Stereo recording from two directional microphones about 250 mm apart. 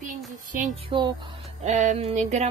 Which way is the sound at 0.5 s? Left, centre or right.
Right.